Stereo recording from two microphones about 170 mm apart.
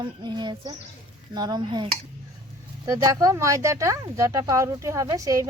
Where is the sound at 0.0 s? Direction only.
25° right (ahead or behind).